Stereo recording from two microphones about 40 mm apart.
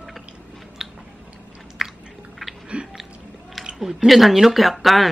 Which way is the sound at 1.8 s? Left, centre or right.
Centre.